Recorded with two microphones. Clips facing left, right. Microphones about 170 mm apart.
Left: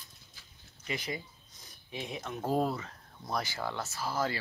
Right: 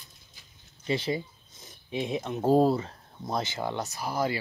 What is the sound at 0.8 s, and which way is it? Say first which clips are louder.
Speech: right 9 dB; 30° right (ahead or behind).